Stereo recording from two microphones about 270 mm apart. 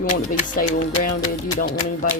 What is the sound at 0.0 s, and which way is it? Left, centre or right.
Speech, left.